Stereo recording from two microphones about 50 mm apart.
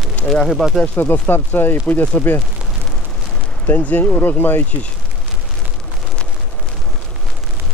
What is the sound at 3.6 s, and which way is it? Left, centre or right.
Speech, left.